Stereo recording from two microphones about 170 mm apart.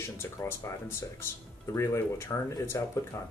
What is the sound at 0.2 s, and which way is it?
Speech, 15° left (ahead or behind).